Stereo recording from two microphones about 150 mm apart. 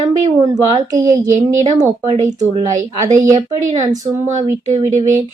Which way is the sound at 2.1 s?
35° right (ahead or behind).